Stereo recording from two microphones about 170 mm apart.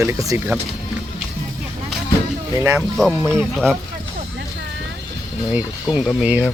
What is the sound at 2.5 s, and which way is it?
Speech, 20° right (ahead or behind).